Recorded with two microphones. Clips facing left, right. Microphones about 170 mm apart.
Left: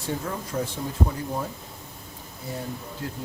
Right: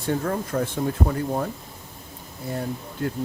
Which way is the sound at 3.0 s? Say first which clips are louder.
Right 8 dB; 60° right (ahead or behind).